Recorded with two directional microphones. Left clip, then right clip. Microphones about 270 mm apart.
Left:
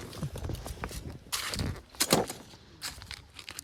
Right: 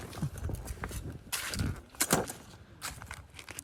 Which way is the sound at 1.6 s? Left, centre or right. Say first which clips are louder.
Left 3 dB; left.